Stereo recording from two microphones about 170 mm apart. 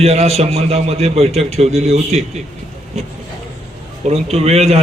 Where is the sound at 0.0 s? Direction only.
35° right (ahead or behind).